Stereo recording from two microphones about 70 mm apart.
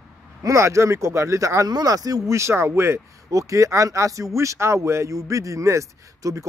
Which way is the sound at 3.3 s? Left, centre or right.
Right.